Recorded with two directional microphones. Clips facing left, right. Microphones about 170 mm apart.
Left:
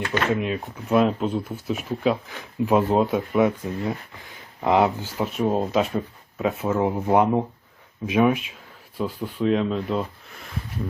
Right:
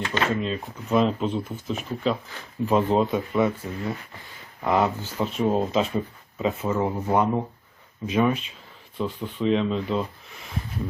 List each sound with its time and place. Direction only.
0.3 s speech: 10° left (ahead or behind)
6.7 s speech: 15° left (ahead or behind)